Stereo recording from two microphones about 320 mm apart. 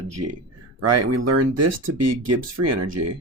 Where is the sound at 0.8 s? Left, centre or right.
Right.